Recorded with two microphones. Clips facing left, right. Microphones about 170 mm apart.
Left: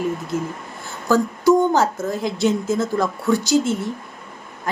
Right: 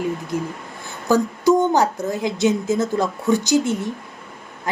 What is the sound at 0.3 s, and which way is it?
A woman's voice, 15° right (ahead or behind).